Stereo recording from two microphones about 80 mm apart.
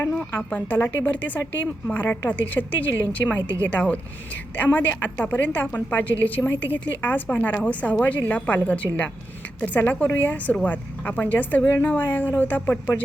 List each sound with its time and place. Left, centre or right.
0.2 s a woman's voice: centre